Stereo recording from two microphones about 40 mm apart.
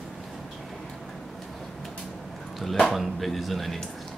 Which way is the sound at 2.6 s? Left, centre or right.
Centre.